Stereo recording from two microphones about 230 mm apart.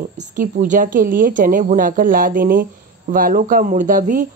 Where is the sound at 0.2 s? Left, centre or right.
Right.